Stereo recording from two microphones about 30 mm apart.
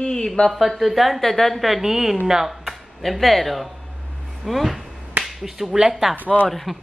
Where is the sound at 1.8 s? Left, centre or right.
Centre.